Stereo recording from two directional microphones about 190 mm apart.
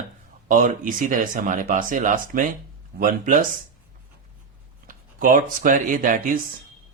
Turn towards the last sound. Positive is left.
turn(degrees=-45)  # may be behind; listen again after turning